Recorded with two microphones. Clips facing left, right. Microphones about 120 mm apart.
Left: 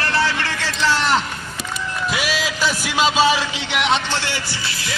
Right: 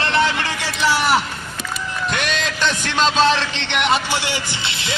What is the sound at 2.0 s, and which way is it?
A man's voice, 5° left (ahead or behind).